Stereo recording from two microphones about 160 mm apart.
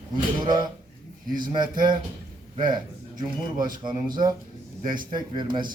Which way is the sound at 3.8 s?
25° right (ahead or behind).